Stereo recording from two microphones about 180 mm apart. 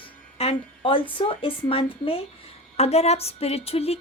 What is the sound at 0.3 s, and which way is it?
A woman's voice, 30° left (ahead or behind).